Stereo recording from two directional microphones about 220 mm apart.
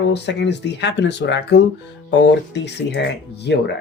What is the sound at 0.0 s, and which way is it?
Speech, 50° left (ahead or behind).